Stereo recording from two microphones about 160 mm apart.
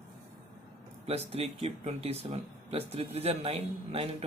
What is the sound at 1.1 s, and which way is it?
Speech, 40° right (ahead or behind).